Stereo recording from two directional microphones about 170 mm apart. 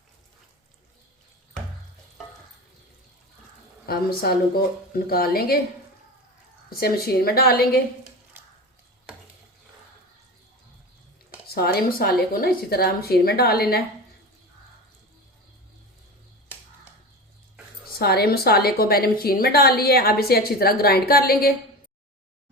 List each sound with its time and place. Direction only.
3.8 s a woman's voice: 60° left (ahead or behind)
6.7 s a woman's voice: 60° left (ahead or behind)
11.4 s a woman's voice: 65° left (ahead or behind)
18.0 s a woman's voice: 65° left (ahead or behind)